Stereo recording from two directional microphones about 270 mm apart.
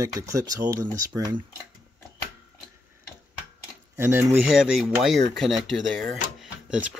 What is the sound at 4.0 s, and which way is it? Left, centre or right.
Speech, centre.